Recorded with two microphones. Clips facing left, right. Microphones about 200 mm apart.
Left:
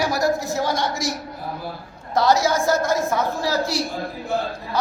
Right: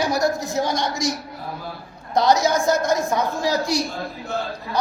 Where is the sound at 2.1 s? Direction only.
20° right (ahead or behind).